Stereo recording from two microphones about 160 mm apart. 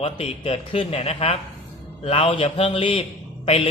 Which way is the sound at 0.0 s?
35° left (ahead or behind).